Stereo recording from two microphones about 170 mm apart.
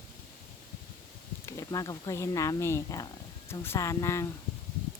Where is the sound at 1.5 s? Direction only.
20° left (ahead or behind).